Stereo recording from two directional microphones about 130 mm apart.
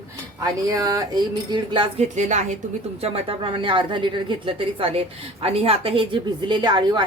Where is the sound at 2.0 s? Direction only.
65° right (ahead or behind).